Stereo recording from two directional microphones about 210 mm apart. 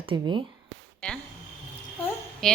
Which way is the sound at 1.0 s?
5° left (ahead or behind).